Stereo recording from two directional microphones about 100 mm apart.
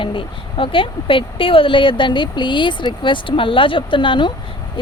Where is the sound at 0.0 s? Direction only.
60° left (ahead or behind).